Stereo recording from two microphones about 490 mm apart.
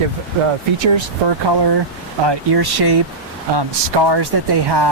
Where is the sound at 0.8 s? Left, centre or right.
Right.